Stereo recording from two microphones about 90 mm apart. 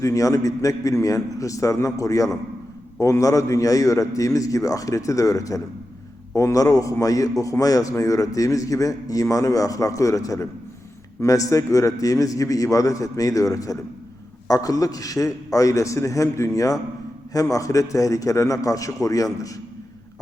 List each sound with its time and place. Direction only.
0.0 s a man's voice: 35° left (ahead or behind)